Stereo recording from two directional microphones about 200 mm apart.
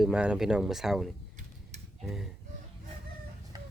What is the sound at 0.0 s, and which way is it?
Speech, 5° right (ahead or behind).